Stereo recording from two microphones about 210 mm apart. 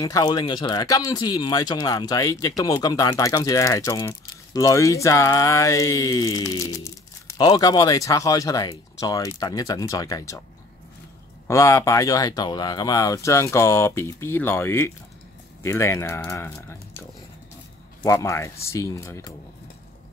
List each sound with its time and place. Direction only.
0.0 s speech: 20° left (ahead or behind)
11.4 s speech: 15° left (ahead or behind)
18.0 s speech: 15° left (ahead or behind)